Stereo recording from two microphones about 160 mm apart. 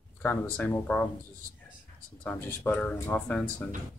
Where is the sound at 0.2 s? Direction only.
10° left (ahead or behind).